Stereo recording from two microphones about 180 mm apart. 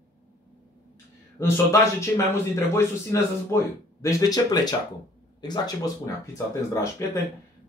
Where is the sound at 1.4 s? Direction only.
15° left (ahead or behind).